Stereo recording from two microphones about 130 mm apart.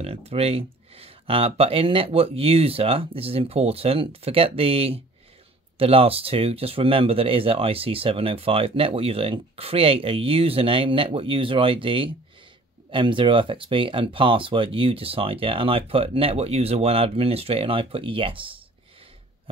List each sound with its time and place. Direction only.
0.0 s speech: 50° right (ahead or behind)